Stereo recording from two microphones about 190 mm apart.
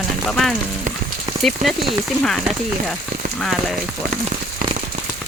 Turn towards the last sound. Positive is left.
turn(degrees=0)  # may be behind; listen again after turning